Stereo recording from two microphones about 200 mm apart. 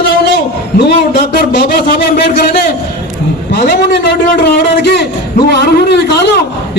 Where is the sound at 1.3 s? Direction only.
50° left (ahead or behind).